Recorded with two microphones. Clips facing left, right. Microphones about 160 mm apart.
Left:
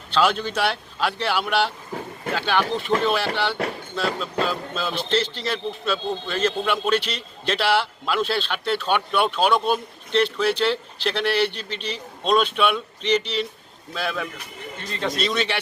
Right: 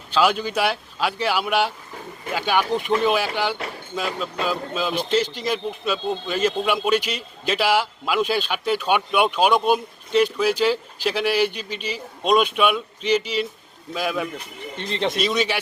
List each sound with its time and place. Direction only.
0.1 s speech: 10° right (ahead or behind)
14.8 s speech: 25° right (ahead or behind)
15.2 s speech: 10° right (ahead or behind)